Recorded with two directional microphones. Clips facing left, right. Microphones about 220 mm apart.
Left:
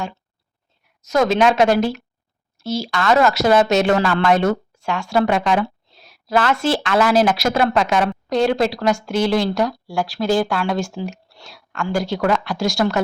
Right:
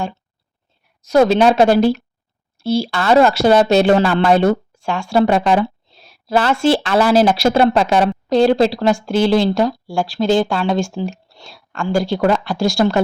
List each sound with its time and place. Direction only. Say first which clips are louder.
1.0 s a woman's voice: right 4 dB; 30° right (ahead or behind)